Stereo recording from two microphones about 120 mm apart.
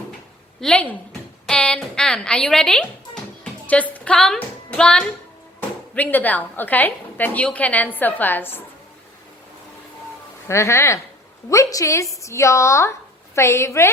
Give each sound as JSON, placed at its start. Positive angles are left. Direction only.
{"t": 0.6, "sound": "speech", "side_deg": 10}
{"t": 10.5, "sound": "a woman's voice", "side_deg": 25}